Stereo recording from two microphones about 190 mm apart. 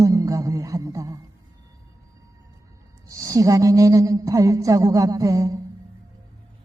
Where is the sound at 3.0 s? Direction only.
15° right (ahead or behind).